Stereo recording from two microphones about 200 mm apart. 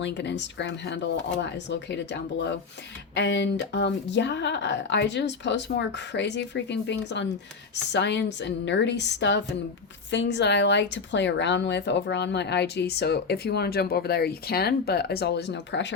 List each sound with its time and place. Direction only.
0.0 s speech: 60° left (ahead or behind)